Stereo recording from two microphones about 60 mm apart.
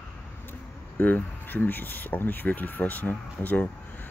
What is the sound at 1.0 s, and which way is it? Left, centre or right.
Speech, left.